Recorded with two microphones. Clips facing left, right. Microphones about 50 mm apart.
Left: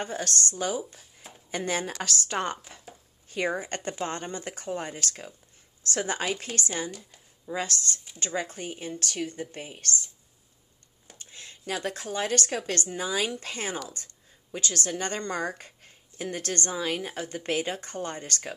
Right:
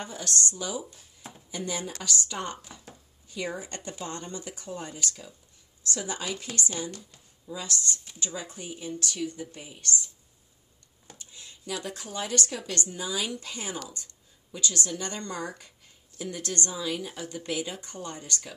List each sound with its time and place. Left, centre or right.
0.0 s speech: left
0.9 s drawer open or close: centre
1.5 s a woman's voice: left
1.9 s speech: left
2.5 s a woman's voice: left
7.4 s a woman's voice: left
11.1 s a sound: left
11.8 s a woman's voice: left